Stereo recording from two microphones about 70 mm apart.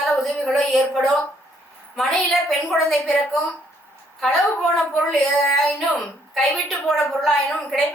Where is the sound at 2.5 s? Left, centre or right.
Centre.